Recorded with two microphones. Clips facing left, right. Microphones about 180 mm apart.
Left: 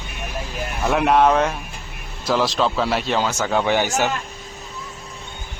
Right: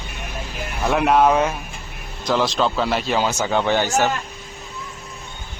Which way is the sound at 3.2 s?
15° right (ahead or behind).